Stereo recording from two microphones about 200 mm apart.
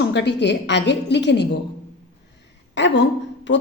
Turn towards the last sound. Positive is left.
turn(degrees=65)  # may be behind; listen again after turning